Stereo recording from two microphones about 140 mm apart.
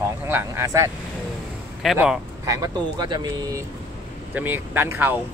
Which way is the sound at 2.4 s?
25° right (ahead or behind).